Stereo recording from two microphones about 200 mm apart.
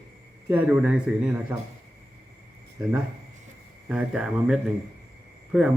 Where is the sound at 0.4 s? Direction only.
10° right (ahead or behind).